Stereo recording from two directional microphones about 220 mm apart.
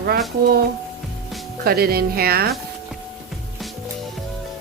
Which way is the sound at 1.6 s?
45° right (ahead or behind).